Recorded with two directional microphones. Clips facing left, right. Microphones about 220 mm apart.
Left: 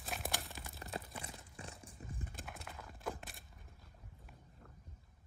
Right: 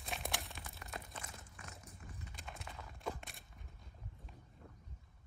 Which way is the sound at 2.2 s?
50° left (ahead or behind).